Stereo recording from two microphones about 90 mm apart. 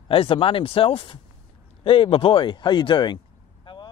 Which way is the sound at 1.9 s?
65° left (ahead or behind).